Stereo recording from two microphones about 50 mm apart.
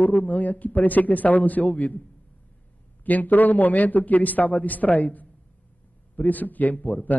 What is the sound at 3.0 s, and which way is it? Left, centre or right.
A man's voice, left.